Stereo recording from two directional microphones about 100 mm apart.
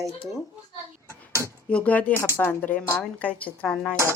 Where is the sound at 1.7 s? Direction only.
15° left (ahead or behind).